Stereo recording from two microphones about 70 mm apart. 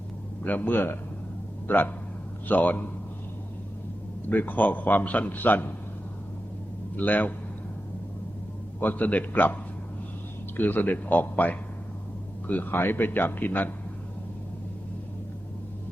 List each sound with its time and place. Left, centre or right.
0.4 s a man's voice: left
4.3 s a man's voice: left
6.9 s a man's voice: left
8.8 s a man's voice: left
10.6 s a man's voice: left